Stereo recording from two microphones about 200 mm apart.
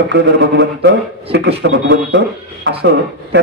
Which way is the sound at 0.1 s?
60° right (ahead or behind).